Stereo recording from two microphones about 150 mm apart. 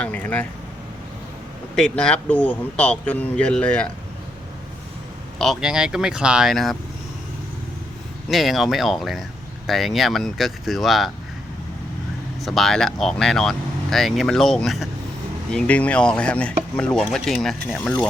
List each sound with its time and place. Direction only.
0.0 s speech: 10° left (ahead or behind)
1.7 s speech: 5° left (ahead or behind)
5.4 s speech: centre (ahead or behind)
8.3 s speech: centre (ahead or behind)
12.4 s speech: centre (ahead or behind)